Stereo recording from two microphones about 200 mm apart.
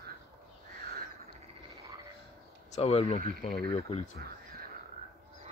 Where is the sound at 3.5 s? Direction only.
20° left (ahead or behind).